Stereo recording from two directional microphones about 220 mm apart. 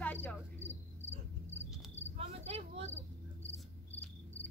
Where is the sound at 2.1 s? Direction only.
30° right (ahead or behind).